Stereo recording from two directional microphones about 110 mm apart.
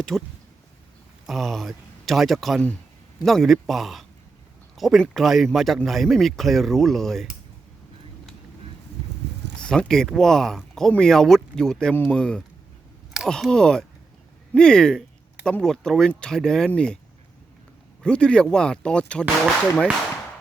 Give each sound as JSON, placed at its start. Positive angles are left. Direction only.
{"t": 0.1, "sound": "speech", "side_deg": 0}
{"t": 1.3, "sound": "speech", "side_deg": 0}
{"t": 9.6, "sound": "speech", "side_deg": 5}
{"t": 18.0, "sound": "speech", "side_deg": 10}